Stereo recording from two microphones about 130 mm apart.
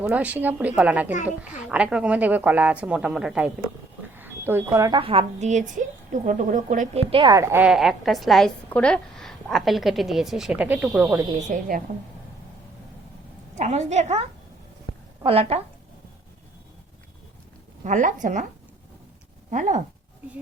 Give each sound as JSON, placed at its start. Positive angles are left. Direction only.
{"t": 0.0, "sound": "a woman's voice", "side_deg": -10}
{"t": 4.1, "sound": "smoke detector", "side_deg": -15}
{"t": 4.9, "sound": "a woman's voice", "side_deg": -45}
{"t": 5.4, "sound": "a woman's voice", "side_deg": -65}
{"t": 6.9, "sound": "a woman's voice", "side_deg": -45}
{"t": 7.3, "sound": "a woman's voice", "side_deg": -20}
{"t": 7.6, "sound": "a woman's voice", "side_deg": -5}
{"t": 11.3, "sound": "a woman's voice", "side_deg": -85}
{"t": 13.6, "sound": "a woman's voice", "side_deg": -60}
{"t": 15.2, "sound": "a woman's voice", "side_deg": -50}
{"t": 17.8, "sound": "speech", "side_deg": -75}
{"t": 19.5, "sound": "speech", "side_deg": -75}